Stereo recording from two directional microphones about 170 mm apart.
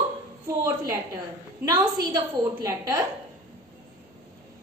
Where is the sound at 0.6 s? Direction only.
20° right (ahead or behind).